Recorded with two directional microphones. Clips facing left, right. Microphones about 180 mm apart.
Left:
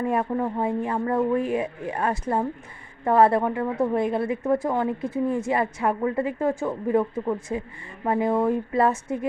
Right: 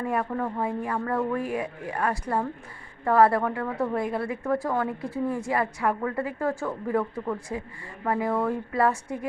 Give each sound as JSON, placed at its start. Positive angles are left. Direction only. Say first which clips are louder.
{"t": 0.0, "sound": "a woman's voice", "louder": "left 3 dB", "side_deg": 25}